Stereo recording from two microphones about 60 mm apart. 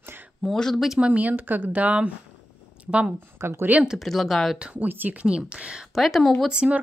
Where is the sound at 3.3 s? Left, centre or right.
Right.